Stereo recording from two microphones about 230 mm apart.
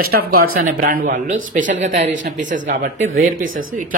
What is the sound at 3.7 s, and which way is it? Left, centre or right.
Speech, right.